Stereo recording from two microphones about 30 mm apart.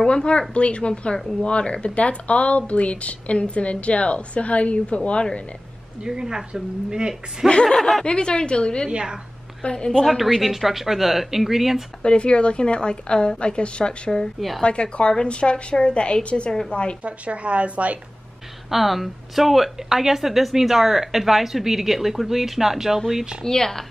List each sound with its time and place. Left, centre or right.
0.1 s a woman's voice: left
6.0 s speech: right
7.6 s speech: centre
8.0 s a woman's voice: left
10.0 s speech: centre
12.0 s a woman's voice: left
17.0 s a woman's voice: right
18.7 s speech: centre
23.4 s a woman's voice: left